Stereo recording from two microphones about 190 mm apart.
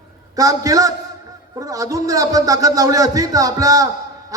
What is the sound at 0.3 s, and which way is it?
A man's voice, 20° right (ahead or behind).